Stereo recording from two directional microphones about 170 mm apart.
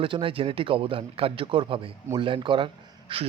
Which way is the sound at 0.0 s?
30° right (ahead or behind).